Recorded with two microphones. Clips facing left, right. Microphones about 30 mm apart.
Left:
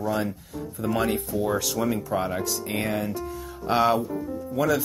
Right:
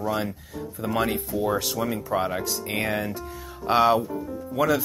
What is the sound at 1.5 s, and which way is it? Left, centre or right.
Speech, right.